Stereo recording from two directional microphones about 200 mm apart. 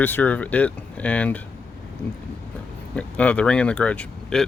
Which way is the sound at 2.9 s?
5° left (ahead or behind).